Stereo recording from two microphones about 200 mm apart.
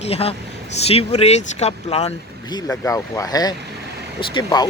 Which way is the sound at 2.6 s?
10° left (ahead or behind).